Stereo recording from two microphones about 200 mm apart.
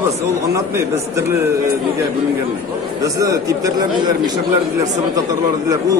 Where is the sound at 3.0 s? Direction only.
15° right (ahead or behind).